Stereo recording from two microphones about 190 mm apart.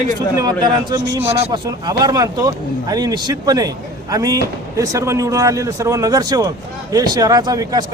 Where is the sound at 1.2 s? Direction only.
30° right (ahead or behind).